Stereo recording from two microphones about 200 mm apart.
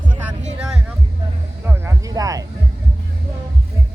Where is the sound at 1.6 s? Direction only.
10° right (ahead or behind).